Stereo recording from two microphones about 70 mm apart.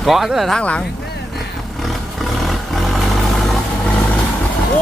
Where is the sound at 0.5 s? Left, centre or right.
Centre.